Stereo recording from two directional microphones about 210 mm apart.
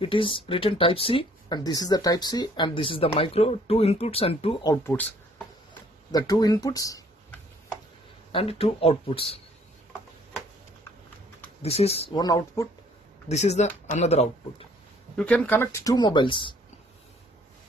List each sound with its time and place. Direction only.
0.0 s speech: 25° left (ahead or behind)
6.1 s speech: 20° left (ahead or behind)
8.3 s speech: 25° left (ahead or behind)
11.6 s speech: 30° left (ahead or behind)
13.3 s speech: 30° left (ahead or behind)
15.1 s speech: 5° left (ahead or behind); by 16.5 s 25° left (ahead or behind)